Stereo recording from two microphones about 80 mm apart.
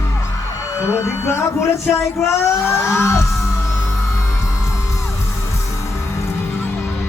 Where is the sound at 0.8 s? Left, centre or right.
Left.